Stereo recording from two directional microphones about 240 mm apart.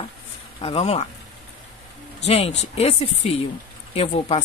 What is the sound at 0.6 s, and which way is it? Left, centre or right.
Speech, left.